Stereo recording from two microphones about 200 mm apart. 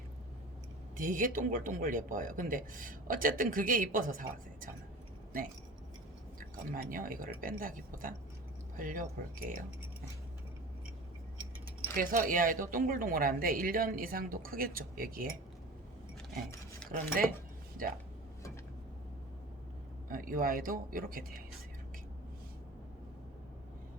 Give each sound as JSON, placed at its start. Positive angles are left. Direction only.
{"t": 0.9, "sound": "speech", "side_deg": -40}
{"t": 6.6, "sound": "speech", "side_deg": -45}
{"t": 11.9, "sound": "speech", "side_deg": -45}
{"t": 16.8, "sound": "cutlery", "side_deg": 5}
{"t": 17.8, "sound": "speech", "side_deg": -45}
{"t": 20.1, "sound": "speech", "side_deg": -45}